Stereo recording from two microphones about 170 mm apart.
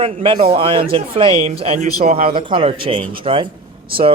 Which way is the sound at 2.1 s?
55° right (ahead or behind).